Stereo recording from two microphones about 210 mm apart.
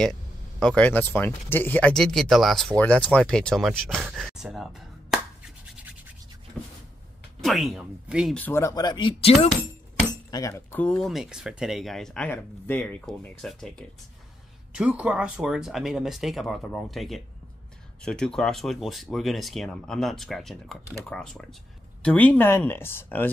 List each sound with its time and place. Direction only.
0.0 s speech: 5° left (ahead or behind)
7.4 s speech: centre (ahead or behind)
8.4 s speech: 10° left (ahead or behind); by 9.5 s 30° left (ahead or behind)
10.3 s speech: 15° left (ahead or behind)